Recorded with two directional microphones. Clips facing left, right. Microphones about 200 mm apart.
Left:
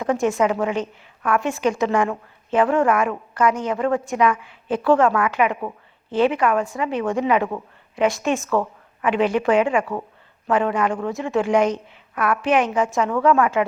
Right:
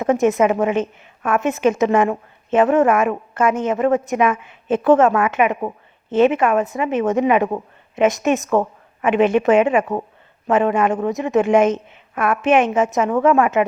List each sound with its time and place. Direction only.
0.0 s a woman's voice: 20° right (ahead or behind)